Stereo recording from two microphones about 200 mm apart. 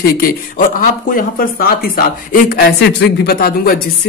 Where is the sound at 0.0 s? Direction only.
45° left (ahead or behind).